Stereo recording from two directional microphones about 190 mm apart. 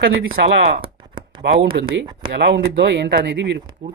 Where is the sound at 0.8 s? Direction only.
25° right (ahead or behind).